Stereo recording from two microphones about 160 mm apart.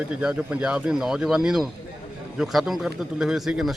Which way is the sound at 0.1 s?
5° right (ahead or behind).